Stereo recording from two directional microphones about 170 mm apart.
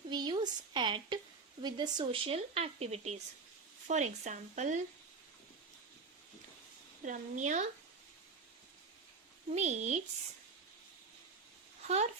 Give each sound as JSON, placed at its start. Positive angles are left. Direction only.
{"t": 0.1, "sound": "a sound", "side_deg": -25}
{"t": 1.6, "sound": "speech", "side_deg": -25}
{"t": 7.0, "sound": "speech", "side_deg": -45}
{"t": 9.5, "sound": "speech", "side_deg": -40}
{"t": 11.9, "sound": "speech", "side_deg": -40}